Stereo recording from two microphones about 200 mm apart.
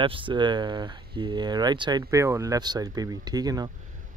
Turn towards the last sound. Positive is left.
turn(degrees=-20)  # may be behind; listen again after turning